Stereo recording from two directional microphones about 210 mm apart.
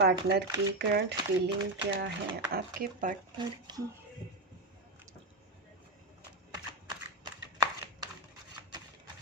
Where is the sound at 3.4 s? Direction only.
20° right (ahead or behind).